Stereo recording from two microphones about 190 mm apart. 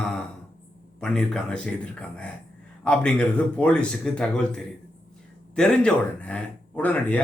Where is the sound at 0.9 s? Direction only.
5° left (ahead or behind).